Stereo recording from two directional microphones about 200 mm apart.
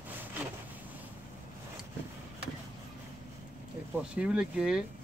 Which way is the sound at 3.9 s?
5° right (ahead or behind).